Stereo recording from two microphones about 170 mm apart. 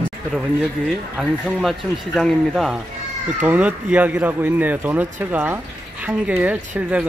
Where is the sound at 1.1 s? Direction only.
5° right (ahead or behind).